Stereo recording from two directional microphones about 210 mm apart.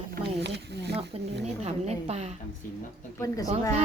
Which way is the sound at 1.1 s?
25° right (ahead or behind).